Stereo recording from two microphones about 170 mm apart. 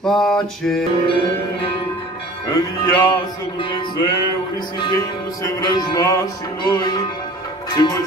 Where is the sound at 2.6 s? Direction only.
25° left (ahead or behind).